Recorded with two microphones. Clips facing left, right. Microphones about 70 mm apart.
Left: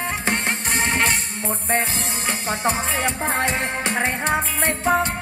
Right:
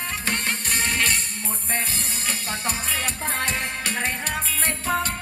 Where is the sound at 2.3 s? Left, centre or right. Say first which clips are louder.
Left 7 dB; left.